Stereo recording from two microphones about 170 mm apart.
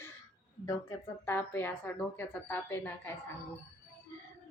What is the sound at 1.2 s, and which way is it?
Speech, 15° left (ahead or behind).